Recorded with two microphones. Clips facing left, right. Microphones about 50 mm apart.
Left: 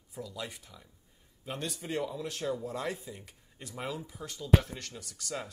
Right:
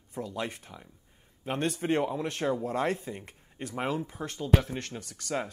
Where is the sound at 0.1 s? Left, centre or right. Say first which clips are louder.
Right 6 dB; right.